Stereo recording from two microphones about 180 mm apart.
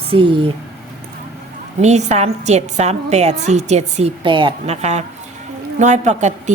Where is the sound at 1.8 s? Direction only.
40° right (ahead or behind).